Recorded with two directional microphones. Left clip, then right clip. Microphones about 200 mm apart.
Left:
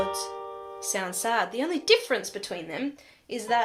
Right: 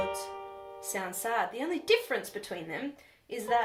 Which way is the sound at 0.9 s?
45° left (ahead or behind).